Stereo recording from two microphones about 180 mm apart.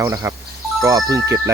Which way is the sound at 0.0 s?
15° right (ahead or behind).